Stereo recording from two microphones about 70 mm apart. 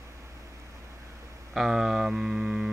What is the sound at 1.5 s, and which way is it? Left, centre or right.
Speech, centre.